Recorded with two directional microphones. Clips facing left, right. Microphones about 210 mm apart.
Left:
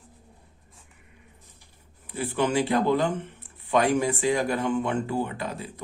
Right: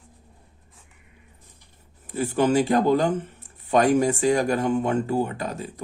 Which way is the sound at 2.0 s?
45° right (ahead or behind).